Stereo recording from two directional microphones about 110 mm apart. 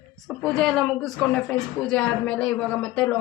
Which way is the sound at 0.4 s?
5° left (ahead or behind).